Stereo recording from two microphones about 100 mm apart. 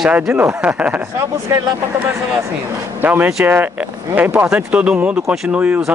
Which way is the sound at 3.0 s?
20° right (ahead or behind).